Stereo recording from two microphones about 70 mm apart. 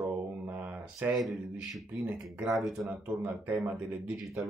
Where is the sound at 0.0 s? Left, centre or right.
Right.